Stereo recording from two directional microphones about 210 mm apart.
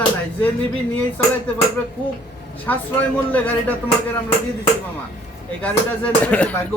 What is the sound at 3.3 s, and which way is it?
Speech, 10° left (ahead or behind).